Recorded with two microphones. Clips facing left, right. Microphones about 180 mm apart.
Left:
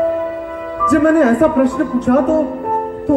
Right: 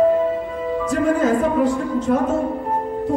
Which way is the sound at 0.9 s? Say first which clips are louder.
Left 8 dB; 65° left (ahead or behind).